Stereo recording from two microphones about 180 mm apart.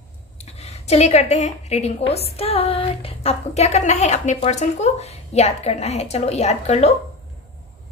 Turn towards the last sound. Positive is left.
turn(degrees=35)  # may be behind; listen again after turning